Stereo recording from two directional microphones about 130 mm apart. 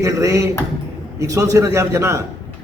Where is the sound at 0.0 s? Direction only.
25° right (ahead or behind).